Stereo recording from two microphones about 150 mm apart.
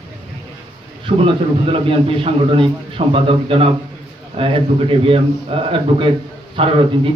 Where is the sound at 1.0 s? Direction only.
35° right (ahead or behind).